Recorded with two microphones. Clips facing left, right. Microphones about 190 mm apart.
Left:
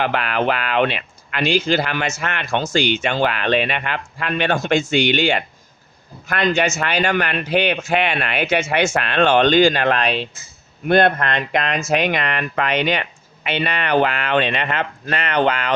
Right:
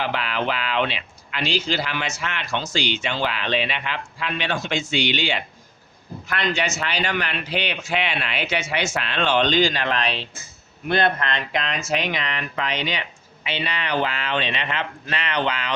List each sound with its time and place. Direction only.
0.0 s speech: 55° left (ahead or behind)